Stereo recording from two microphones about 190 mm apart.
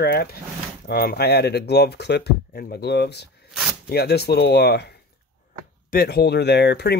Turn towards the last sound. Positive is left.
turn(degrees=60)  # may be behind; listen again after turning